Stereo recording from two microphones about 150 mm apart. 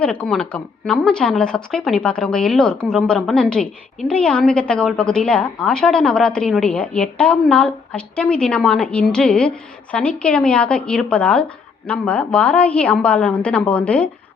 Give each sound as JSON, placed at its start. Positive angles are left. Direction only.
{"t": 0.0, "sound": "a woman's voice", "side_deg": 10}